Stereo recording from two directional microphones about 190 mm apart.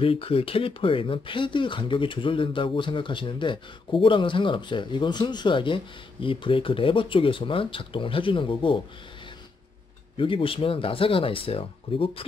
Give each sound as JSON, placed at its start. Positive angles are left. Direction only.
{"t": 0.0, "sound": "speech", "side_deg": 30}
{"t": 10.1, "sound": "speech", "side_deg": 25}